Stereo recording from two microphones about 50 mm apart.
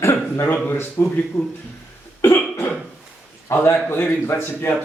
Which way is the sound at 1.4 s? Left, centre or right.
Left.